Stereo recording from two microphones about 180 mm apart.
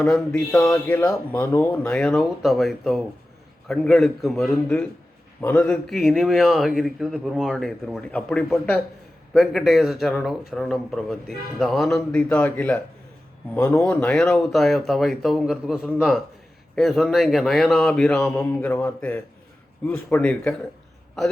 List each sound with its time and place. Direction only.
0.0 s a man's voice: 5° left (ahead or behind)
0.5 s speech: 20° left (ahead or behind)
0.9 s a man's voice: 10° left (ahead or behind)